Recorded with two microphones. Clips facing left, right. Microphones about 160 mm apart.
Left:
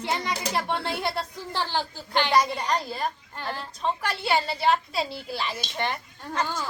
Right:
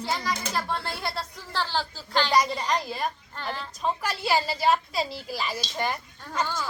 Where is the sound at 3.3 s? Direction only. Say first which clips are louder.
Even; 10° left (ahead or behind).